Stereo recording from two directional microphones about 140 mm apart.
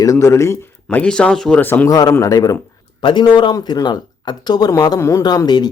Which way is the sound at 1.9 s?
25° left (ahead or behind).